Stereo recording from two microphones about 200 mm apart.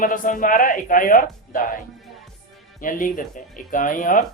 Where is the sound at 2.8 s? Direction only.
40° left (ahead or behind).